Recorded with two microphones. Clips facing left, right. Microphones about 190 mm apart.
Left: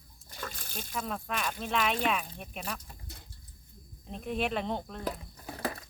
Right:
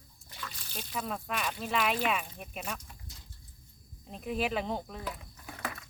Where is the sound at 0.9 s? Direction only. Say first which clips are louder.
Even; centre (ahead or behind).